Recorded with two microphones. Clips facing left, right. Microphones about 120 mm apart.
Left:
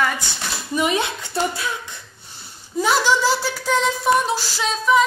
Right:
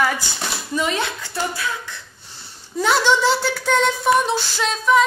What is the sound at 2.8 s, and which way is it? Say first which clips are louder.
Speech: right 1 dB; 5° left (ahead or behind).